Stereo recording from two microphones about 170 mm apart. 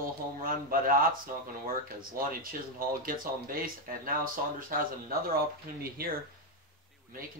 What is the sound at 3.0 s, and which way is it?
Speech, 55° right (ahead or behind).